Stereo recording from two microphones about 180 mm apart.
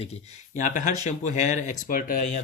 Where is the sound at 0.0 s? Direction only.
40° left (ahead or behind).